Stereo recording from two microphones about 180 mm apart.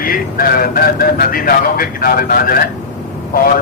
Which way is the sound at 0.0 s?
55° left (ahead or behind).